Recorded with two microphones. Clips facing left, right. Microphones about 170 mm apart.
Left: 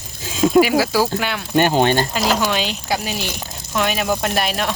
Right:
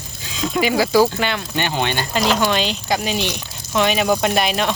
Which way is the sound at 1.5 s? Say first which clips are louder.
Left 9 dB; 45° left (ahead or behind).